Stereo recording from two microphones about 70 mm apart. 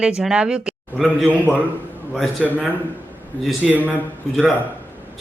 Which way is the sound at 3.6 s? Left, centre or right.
Right.